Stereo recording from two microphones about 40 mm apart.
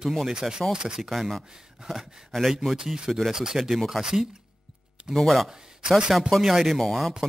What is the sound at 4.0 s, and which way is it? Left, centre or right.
Speech, centre.